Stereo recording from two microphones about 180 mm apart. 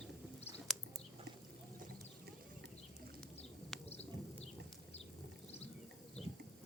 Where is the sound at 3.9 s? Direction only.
35° left (ahead or behind).